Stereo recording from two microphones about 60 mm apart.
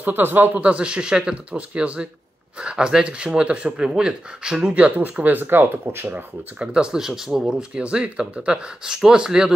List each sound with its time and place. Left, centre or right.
0.0 s speech: right
0.6 s speech: right
6.6 s speech: centre